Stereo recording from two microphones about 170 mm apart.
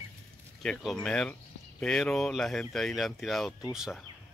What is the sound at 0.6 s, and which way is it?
Speech, 5° left (ahead or behind).